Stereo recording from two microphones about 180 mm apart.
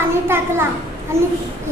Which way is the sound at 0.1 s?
15° right (ahead or behind).